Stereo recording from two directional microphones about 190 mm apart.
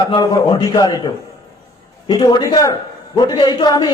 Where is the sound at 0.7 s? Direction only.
20° left (ahead or behind).